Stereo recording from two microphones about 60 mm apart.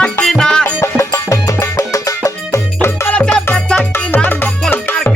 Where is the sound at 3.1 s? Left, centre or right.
Left.